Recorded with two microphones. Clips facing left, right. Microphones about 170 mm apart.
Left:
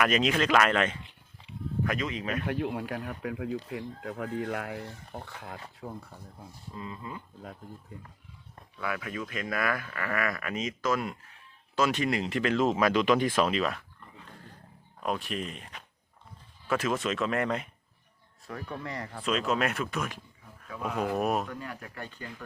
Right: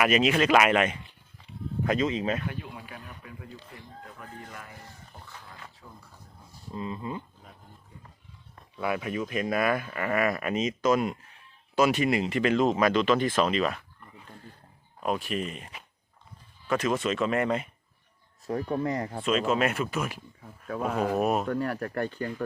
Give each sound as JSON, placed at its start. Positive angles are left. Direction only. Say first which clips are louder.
{"t": 0.0, "sound": "speech", "louder": "right 3 dB", "side_deg": -5}
{"t": 1.8, "sound": "speech", "louder": "right 5 dB", "side_deg": -25}
{"t": 2.5, "sound": "speech", "louder": "left 9 dB", "side_deg": 65}
{"t": 5.1, "sound": "speech", "louder": "left 8 dB", "side_deg": 65}
{"t": 5.8, "sound": "speech", "louder": "left 10 dB", "side_deg": 45}
{"t": 6.7, "sound": "speech", "louder": "right 6 dB", "side_deg": -25}
{"t": 8.8, "sound": "speech", "louder": "right 5 dB", "side_deg": -20}
{"t": 15.0, "sound": "speech", "louder": "right 3 dB", "side_deg": 0}
{"t": 18.4, "sound": "speech", "louder": "right 9 dB", "side_deg": -40}
{"t": 19.2, "sound": "speech", "louder": "right 2 dB", "side_deg": 0}
{"t": 20.4, "sound": "speech", "louder": "right 6 dB", "side_deg": -50}
{"t": 21.2, "sound": "speech", "louder": "right 2 dB", "side_deg": 0}
{"t": 21.4, "sound": "speech", "louder": "right 10 dB", "side_deg": -60}